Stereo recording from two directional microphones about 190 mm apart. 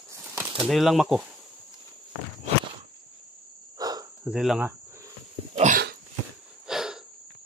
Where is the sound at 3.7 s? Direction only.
20° right (ahead or behind).